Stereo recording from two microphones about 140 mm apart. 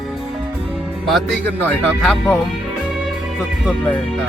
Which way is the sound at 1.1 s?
Centre (ahead or behind).